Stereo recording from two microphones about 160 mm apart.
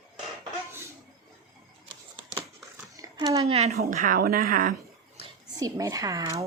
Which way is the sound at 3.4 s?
40° right (ahead or behind).